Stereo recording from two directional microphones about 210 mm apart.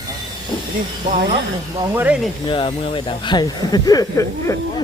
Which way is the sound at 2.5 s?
25° left (ahead or behind).